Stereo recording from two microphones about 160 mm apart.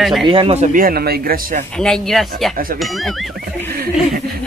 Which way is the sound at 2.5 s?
65° right (ahead or behind).